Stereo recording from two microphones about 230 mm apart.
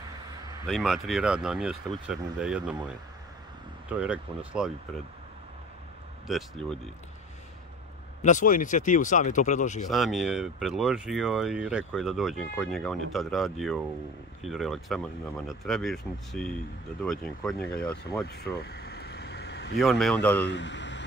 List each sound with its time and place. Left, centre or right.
0.7 s speech: centre
3.9 s speech: centre
6.2 s speech: centre
8.2 s speech: left
9.8 s speech: centre
18.2 s vehicle: left
19.8 s speech: centre
20.4 s speech: left